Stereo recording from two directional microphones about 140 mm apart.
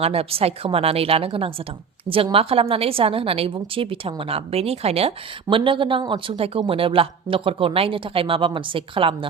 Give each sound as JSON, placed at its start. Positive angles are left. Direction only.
{"t": 0.0, "sound": "a woman's voice", "side_deg": -45}